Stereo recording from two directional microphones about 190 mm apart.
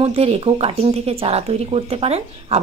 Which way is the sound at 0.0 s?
30° right (ahead or behind).